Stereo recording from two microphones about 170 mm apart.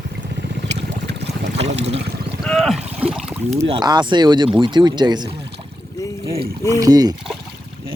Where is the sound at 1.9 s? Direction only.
85° right.